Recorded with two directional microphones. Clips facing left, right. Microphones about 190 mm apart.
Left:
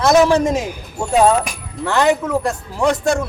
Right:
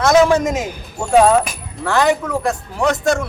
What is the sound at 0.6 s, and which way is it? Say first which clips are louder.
Speech: left 1 dB; 10° left (ahead or behind).